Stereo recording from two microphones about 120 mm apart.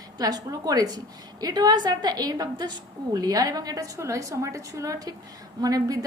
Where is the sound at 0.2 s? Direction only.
35° right (ahead or behind).